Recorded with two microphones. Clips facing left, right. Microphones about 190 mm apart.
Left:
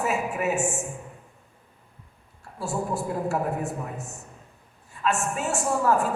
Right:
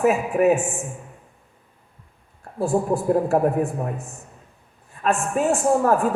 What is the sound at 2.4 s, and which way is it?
A woman's voice, 55° right (ahead or behind).